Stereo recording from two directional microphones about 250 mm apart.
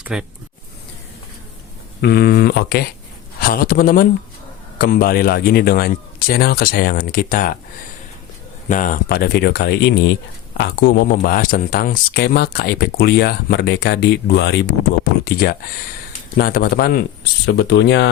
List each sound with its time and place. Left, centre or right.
0.0 s speech: centre
2.0 s speech: left
8.7 s speech: left